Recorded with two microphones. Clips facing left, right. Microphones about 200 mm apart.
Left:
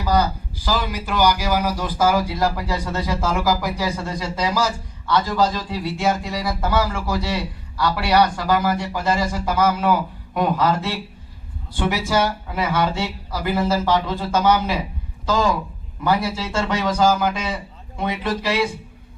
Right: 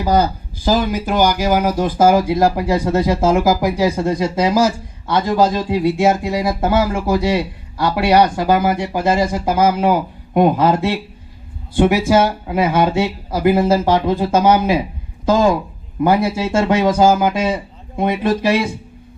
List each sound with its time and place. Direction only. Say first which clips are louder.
0.0 s speech: right 4 dB; 50° right (ahead or behind)